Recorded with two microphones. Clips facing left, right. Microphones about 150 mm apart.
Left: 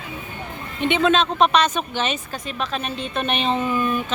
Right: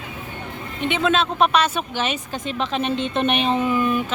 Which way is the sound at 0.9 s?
5° right (ahead or behind).